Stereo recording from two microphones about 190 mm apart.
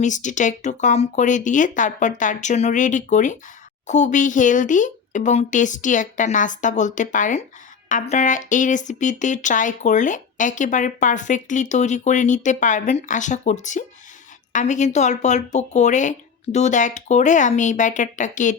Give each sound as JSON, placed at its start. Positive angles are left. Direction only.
{"t": 0.0, "sound": "speech", "side_deg": 40}